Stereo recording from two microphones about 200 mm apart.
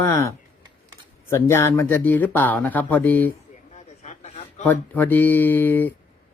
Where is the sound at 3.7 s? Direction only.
35° left (ahead or behind).